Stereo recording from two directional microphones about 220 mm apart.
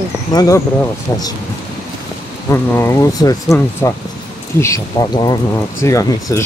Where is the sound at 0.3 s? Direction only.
20° left (ahead or behind).